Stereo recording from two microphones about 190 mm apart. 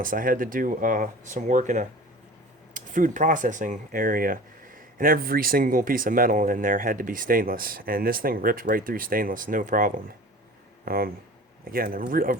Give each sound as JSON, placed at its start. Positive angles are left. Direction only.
{"t": 0.0, "sound": "speech", "side_deg": -45}